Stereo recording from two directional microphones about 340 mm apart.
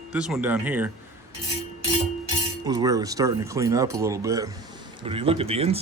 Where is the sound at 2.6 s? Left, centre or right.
Centre.